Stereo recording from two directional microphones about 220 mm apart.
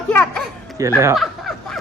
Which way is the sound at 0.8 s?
15° right (ahead or behind).